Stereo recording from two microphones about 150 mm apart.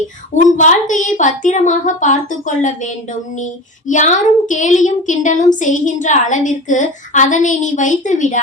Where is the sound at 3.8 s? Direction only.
55° left (ahead or behind).